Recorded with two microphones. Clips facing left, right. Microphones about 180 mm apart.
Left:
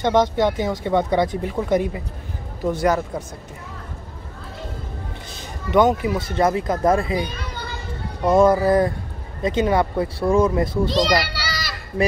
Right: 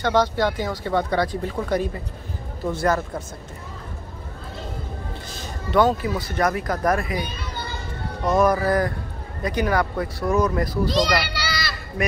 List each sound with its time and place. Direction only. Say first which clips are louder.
0.0 s a man's voice: left 3 dB; 20° left (ahead or behind)
5.7 s speech: left 2 dB; 20° left (ahead or behind)
8.3 s speech: left 4 dB; 25° left (ahead or behind)
11.1 s children playing: left 1 dB; 10° left (ahead or behind)